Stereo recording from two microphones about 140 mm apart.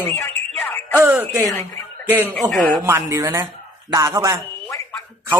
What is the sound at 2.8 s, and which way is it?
Speech, 20° right (ahead or behind).